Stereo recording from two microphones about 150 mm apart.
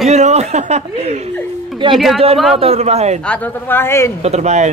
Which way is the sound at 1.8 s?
35° right (ahead or behind).